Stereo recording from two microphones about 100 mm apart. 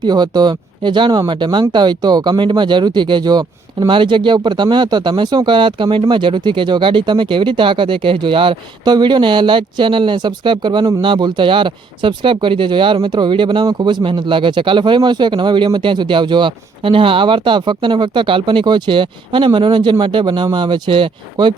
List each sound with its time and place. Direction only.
0.0 s speech: 45° right (ahead or behind)
8.8 s speech: 45° right (ahead or behind)